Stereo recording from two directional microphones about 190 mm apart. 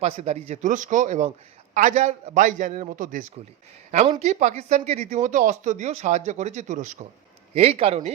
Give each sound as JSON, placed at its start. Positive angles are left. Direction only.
{"t": 0.0, "sound": "speech", "side_deg": -35}